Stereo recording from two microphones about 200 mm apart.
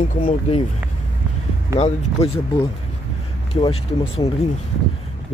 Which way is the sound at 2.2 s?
30° left (ahead or behind).